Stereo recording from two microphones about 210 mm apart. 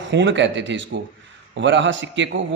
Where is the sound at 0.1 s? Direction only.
60° right (ahead or behind).